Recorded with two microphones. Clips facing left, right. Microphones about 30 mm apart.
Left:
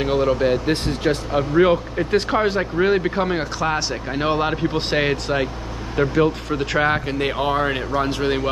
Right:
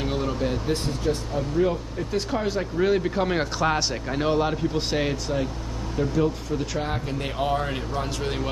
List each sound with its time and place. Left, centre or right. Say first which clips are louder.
0.0 s speech: left 8 dB; left
0.7 s speech: left 5 dB; left
3.3 s speech: left 2 dB; centre
4.1 s speech: left 3 dB; left
5.1 s speech: left 5 dB; left
7.1 s speech: left 5 dB; left